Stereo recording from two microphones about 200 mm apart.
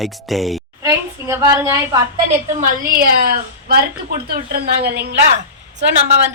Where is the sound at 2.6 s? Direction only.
45° right (ahead or behind).